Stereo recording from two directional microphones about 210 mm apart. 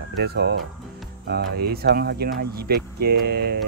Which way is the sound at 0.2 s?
55° right (ahead or behind).